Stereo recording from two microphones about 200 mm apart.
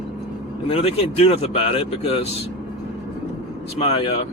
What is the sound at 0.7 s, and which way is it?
Speech, 30° left (ahead or behind).